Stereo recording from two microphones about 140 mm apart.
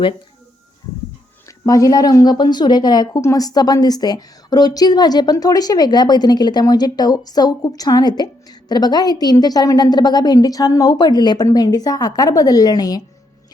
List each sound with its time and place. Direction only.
1.5 s speech: 25° left (ahead or behind)